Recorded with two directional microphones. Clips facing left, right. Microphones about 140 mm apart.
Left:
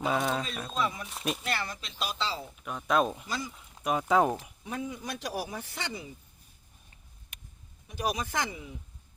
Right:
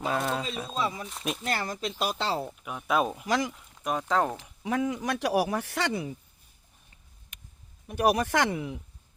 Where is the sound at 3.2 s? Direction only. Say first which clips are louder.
Right 9 dB; 90° right.